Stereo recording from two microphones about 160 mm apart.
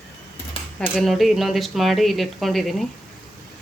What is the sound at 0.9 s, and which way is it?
Speech, centre (ahead or behind).